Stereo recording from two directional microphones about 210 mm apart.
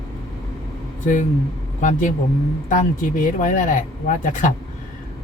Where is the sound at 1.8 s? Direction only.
35° left (ahead or behind).